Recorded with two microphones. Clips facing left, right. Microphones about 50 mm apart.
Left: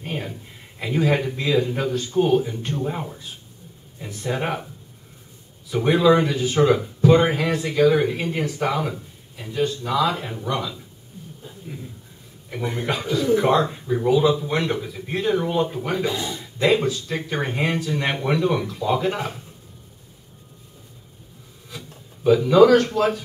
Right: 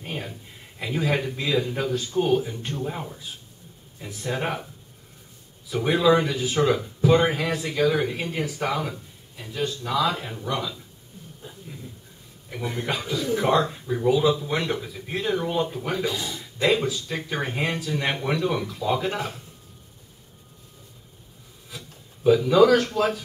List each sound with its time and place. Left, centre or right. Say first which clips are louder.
0.0 s a man's voice: left 3 dB; centre
5.7 s speech: left 3 dB; centre
11.6 s dog: left 6 dB; centre
12.4 s speech: left 3 dB; centre
16.1 s speech: left 3 dB; left
16.3 s speech: left 3 dB; centre
21.6 s speech: left 3 dB; centre